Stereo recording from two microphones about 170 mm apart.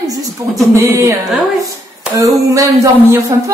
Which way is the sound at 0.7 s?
15° right (ahead or behind).